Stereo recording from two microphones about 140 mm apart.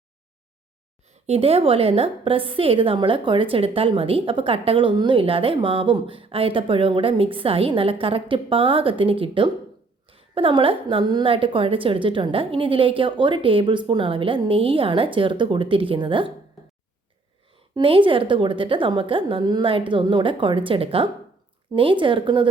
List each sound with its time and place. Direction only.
1.3 s a woman's voice: 45° right (ahead or behind)
17.7 s a woman's voice: 40° right (ahead or behind)